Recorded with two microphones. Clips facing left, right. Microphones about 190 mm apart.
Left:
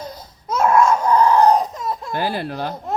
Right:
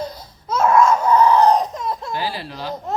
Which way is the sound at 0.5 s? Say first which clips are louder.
Even; 10° left (ahead or behind).